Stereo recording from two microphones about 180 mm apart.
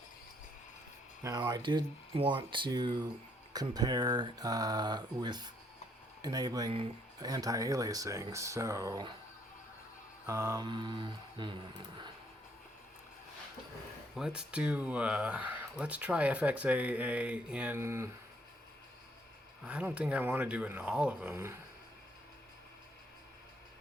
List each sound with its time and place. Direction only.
1.2 s speech: 25° right (ahead or behind)
10.2 s speech: 15° right (ahead or behind)
14.2 s speech: 5° right (ahead or behind)
19.6 s speech: 5° right (ahead or behind)